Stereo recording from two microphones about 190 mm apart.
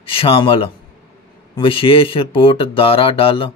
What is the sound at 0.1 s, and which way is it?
Speech, 30° left (ahead or behind).